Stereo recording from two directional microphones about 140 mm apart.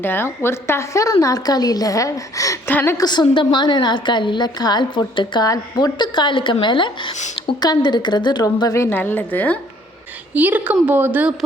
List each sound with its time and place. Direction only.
0.0 s a woman's voice: 15° left (ahead or behind)
10.3 s a woman's voice: 10° right (ahead or behind)